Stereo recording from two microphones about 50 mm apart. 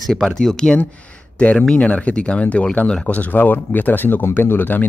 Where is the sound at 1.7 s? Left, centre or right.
Left.